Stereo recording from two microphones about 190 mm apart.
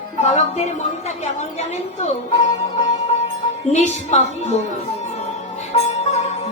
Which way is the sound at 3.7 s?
35° left (ahead or behind).